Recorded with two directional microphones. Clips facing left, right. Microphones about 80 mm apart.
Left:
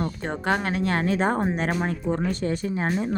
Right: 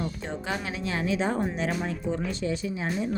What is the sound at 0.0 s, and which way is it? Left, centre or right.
Speech, left.